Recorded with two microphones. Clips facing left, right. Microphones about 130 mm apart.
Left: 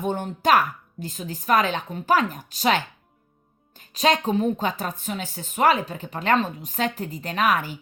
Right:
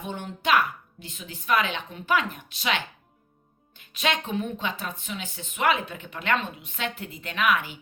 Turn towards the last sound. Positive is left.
turn(degrees=40)  # may be behind; listen again after turning